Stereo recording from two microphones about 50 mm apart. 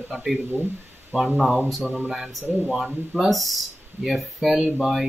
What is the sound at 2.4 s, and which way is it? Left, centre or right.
Speech, right.